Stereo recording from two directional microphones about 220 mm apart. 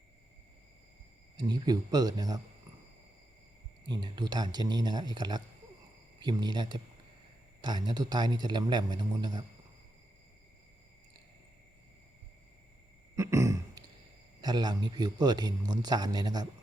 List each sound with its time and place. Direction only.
1.4 s speech: 20° right (ahead or behind)
3.8 s a man's voice: 20° right (ahead or behind)
13.1 s a sound: 15° right (ahead or behind)
14.4 s a man's voice: 20° right (ahead or behind)